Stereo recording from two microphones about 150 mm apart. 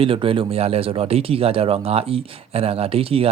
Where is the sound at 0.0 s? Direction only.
35° right (ahead or behind).